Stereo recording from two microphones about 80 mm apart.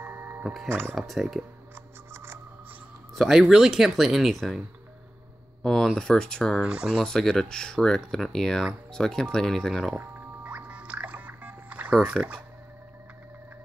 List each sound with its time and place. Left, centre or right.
0.0 s music: right
0.7 s speech: right
0.9 s speech: centre
3.2 s speech: centre
5.6 s speech: centre
6.6 s speech: centre
7.0 s speech: centre
9.9 s music: centre
12.1 s speech: centre